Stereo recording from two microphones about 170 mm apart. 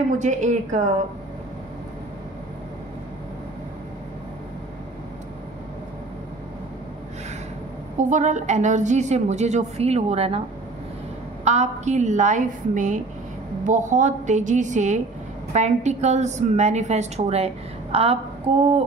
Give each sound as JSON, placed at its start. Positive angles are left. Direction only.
{"t": 0.2, "sound": "a woman's voice", "side_deg": -45}
{"t": 8.0, "sound": "a woman's voice", "side_deg": -45}
{"t": 11.4, "sound": "a woman's voice", "side_deg": -40}